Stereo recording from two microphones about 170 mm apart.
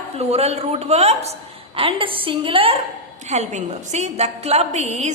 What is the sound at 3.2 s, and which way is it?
A woman's voice, 40° right (ahead or behind).